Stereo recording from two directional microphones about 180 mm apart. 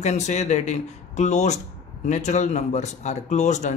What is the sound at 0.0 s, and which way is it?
Speech, 40° left (ahead or behind).